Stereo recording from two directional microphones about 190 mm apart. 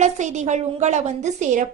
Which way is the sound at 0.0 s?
40° right (ahead or behind).